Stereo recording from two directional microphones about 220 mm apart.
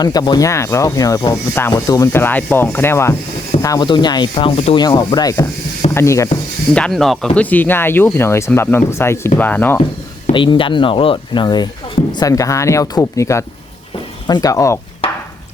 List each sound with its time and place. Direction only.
0.0 s speech: 15° left (ahead or behind)
3.6 s rub: 15° left (ahead or behind)
5.9 s speech: 10° left (ahead or behind)
10.3 s rub: 20° left (ahead or behind)
12.1 s speech: 15° left (ahead or behind)